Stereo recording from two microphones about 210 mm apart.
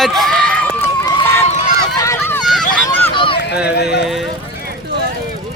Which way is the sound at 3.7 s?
50° left (ahead or behind).